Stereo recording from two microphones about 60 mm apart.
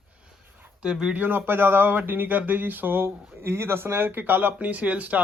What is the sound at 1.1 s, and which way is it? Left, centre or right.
Speech, right.